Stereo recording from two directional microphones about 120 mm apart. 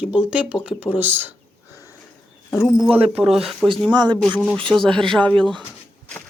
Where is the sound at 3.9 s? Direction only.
40° right (ahead or behind).